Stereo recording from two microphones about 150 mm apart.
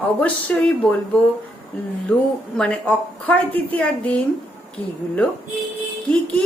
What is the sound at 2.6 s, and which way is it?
Speech, 10° left (ahead or behind).